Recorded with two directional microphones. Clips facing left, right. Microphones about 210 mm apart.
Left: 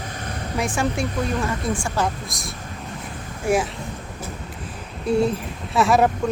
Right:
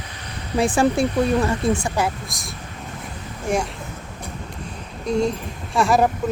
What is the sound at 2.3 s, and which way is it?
Speech, centre (ahead or behind).